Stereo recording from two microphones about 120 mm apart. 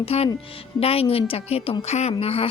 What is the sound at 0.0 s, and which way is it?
A woman's voice, 55° left (ahead or behind).